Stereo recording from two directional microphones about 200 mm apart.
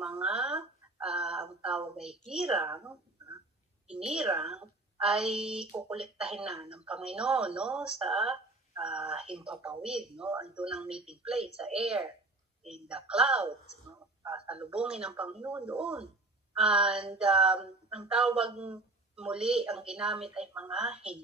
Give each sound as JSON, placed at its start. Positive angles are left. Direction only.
{"t": 0.0, "sound": "a woman's voice", "side_deg": -5}